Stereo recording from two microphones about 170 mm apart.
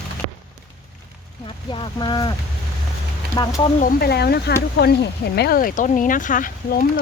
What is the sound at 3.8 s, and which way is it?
Speech, 60° left (ahead or behind).